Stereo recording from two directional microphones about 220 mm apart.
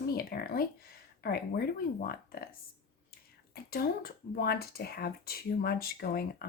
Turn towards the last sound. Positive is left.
turn(degrees=45)  # may be behind; listen again after turning